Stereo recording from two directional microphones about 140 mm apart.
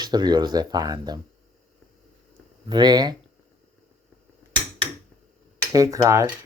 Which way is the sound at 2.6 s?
30° right (ahead or behind).